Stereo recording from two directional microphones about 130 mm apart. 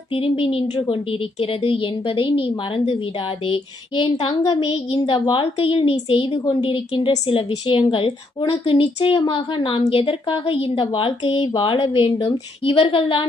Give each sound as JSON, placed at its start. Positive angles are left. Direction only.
{"t": 0.1, "sound": "a woman's voice", "side_deg": 45}
{"t": 5.1, "sound": "a woman's voice", "side_deg": 30}
{"t": 5.4, "sound": "a woman's voice", "side_deg": 45}
{"t": 6.4, "sound": "a woman's voice", "side_deg": 30}
{"t": 6.7, "sound": "a woman's voice", "side_deg": 40}